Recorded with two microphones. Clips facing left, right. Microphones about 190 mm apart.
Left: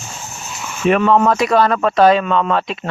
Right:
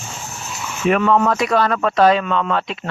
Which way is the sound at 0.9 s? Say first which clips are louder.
Left 2 dB; 25° left (ahead or behind).